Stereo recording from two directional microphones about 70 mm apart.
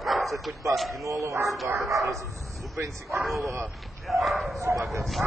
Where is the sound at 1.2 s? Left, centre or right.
Right.